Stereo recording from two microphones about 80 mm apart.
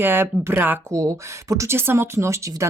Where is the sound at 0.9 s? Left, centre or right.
Right.